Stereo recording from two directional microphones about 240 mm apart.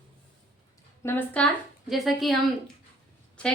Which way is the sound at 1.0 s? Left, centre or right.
Centre.